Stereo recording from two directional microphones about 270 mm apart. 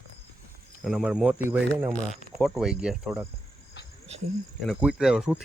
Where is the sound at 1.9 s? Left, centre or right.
Centre.